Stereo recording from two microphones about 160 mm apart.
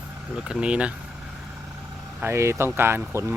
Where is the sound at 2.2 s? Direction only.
15° right (ahead or behind).